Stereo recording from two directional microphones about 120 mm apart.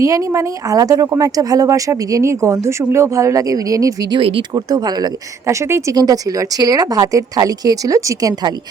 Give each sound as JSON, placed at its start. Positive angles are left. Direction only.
{"t": 0.0, "sound": "speech", "side_deg": -25}
{"t": 4.2, "sound": "speech", "side_deg": -45}